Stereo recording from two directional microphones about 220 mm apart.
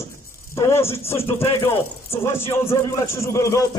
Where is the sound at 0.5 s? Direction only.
10° left (ahead or behind).